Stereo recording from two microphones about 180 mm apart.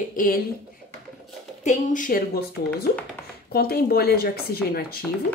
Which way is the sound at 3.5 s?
60° left (ahead or behind).